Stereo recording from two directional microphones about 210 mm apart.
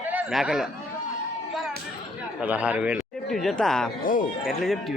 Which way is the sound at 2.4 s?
5° right (ahead or behind).